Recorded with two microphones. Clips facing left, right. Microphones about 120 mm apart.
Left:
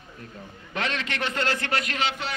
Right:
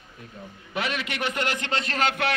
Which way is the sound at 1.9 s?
55° right (ahead or behind).